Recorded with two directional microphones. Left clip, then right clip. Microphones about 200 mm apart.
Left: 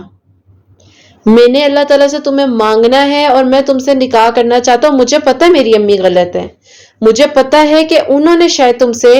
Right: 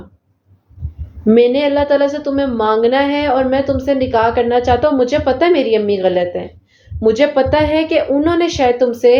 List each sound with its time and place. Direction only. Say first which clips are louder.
1.3 s speech: left 5 dB; 45° left (ahead or behind)